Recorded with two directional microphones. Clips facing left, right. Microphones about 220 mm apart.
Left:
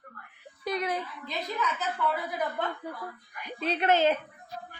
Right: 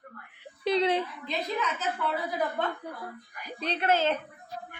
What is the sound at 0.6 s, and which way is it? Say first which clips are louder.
Speech: right 6 dB; 30° right (ahead or behind).